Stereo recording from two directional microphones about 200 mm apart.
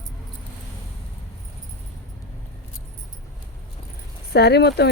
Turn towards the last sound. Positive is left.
turn(degrees=55)  # may be behind; listen again after turning